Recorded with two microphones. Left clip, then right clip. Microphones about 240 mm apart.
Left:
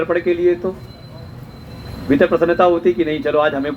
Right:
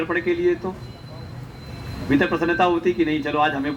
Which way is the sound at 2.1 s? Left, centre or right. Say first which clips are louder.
Left 6 dB; right.